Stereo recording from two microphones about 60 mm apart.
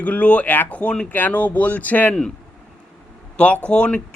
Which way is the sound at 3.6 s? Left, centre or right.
Centre.